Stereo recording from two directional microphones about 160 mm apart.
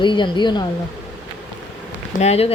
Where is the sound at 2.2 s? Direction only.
40° left (ahead or behind).